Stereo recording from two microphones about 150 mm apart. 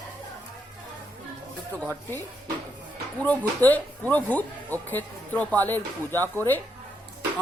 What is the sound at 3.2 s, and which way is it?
A woman's voice, 10° left (ahead or behind).